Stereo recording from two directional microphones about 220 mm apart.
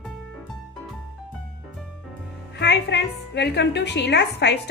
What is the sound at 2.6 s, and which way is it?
A woman's voice, 50° left (ahead or behind).